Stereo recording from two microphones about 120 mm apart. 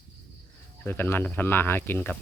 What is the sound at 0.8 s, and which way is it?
Speech, 15° left (ahead or behind).